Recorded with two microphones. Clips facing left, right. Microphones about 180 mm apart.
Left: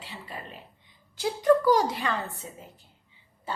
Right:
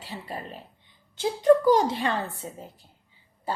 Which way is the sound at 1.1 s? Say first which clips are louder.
Right 3 dB; 25° right (ahead or behind).